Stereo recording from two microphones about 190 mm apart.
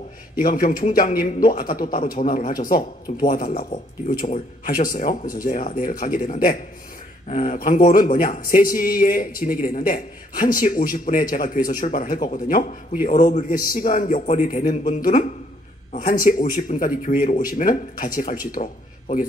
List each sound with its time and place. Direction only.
0.4 s a man's voice: 50° left (ahead or behind)